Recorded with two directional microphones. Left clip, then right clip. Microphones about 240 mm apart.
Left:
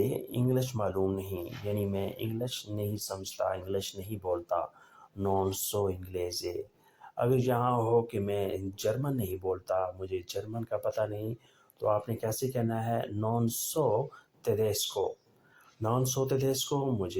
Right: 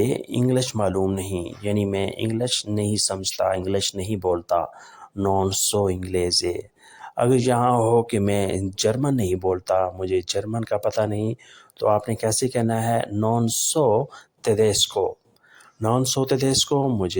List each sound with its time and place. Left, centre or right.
0.0 s speech: right